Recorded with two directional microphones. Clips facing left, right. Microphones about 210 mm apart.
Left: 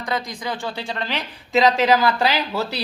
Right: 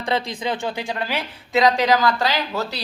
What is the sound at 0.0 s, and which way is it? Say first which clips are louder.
Speech: right 3 dB; 25° right (ahead or behind).